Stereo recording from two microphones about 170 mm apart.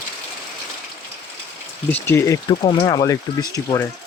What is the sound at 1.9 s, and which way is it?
Speech, 10° left (ahead or behind).